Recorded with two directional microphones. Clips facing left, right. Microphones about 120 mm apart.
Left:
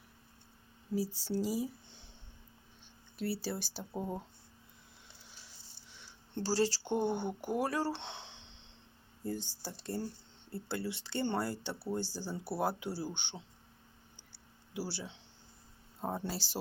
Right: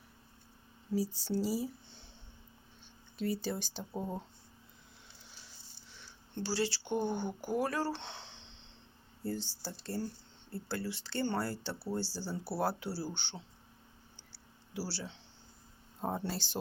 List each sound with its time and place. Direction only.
0.9 s speech: 10° left (ahead or behind)
3.2 s speech: 10° left (ahead or behind)
6.3 s speech: 35° left (ahead or behind); by 8.4 s 15° left (ahead or behind)
9.6 s speech: 20° left (ahead or behind)
14.7 s speech: 15° left (ahead or behind)
16.0 s speech: centre (ahead or behind)